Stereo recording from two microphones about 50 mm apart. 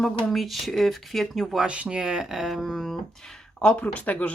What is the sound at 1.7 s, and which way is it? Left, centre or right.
Speech, right.